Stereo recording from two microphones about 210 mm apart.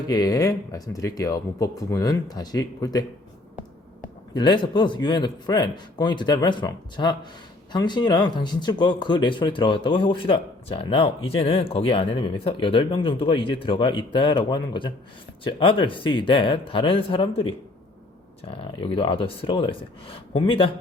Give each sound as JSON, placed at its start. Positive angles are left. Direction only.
{"t": 0.1, "sound": "speech", "side_deg": 15}
{"t": 4.4, "sound": "speech", "side_deg": 20}